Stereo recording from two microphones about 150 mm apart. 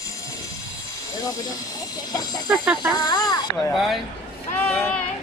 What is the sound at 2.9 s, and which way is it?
Speech, 25° left (ahead or behind).